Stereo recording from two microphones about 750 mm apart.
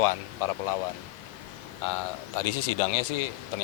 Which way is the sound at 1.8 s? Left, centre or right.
Left.